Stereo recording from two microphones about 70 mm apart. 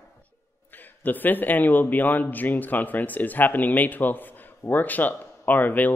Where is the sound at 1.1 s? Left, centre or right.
Left.